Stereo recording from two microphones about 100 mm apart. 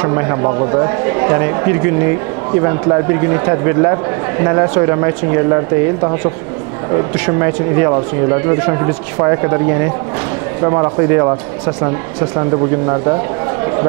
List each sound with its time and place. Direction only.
0.0 s speech: 30° right (ahead or behind)